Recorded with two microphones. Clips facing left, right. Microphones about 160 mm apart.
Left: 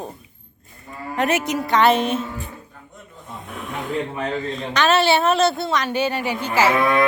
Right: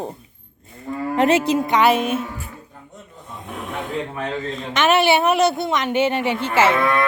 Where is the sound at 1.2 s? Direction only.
30° right (ahead or behind); by 2.5 s 5° right (ahead or behind).